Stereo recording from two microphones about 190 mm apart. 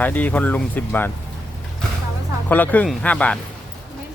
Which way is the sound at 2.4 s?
10° left (ahead or behind).